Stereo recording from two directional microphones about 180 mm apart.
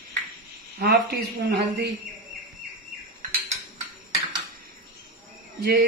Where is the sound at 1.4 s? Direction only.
60° right (ahead or behind).